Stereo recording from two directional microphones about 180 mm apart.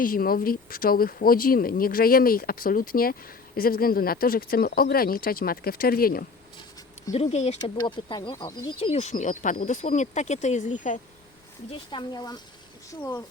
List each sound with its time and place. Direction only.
0.0 s speech: 55° left (ahead or behind)
7.1 s speech: 35° left (ahead or behind)
7.8 s speech: 25° left (ahead or behind); by 11.0 s 45° left (ahead or behind)
11.9 s speech: 25° left (ahead or behind)